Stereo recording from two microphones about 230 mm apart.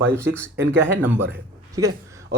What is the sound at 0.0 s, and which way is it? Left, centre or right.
A man's voice, centre.